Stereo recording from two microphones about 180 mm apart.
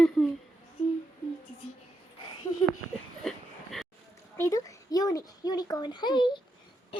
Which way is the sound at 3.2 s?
Centre (ahead or behind).